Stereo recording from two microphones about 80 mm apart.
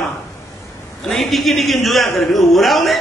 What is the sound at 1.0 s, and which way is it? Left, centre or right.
A man's voice, centre.